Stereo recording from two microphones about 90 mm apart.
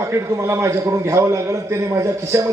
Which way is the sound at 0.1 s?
30° right (ahead or behind).